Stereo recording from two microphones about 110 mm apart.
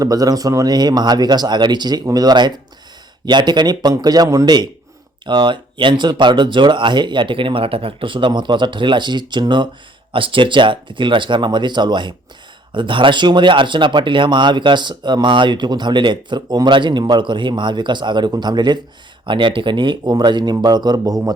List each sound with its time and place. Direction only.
0.0 s speech: 35° right (ahead or behind)